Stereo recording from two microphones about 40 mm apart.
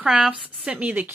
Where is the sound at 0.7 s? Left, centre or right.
Right.